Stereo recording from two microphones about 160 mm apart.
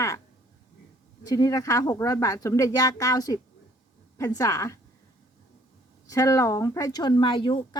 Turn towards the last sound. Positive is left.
turn(degrees=30)  # may be behind; listen again after turning